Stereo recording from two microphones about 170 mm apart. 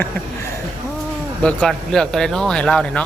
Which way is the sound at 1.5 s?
5° left (ahead or behind).